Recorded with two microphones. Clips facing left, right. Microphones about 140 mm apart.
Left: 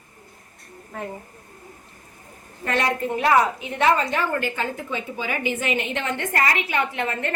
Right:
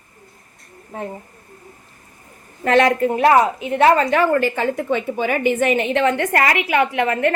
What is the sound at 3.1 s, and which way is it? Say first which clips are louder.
Speech: right 1 dB; 40° right (ahead or behind).